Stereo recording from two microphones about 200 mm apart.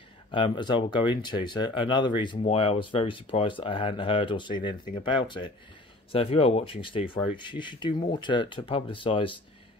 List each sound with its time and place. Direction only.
0.3 s speech: 25° left (ahead or behind)